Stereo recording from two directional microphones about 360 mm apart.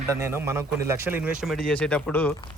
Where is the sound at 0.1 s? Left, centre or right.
Centre.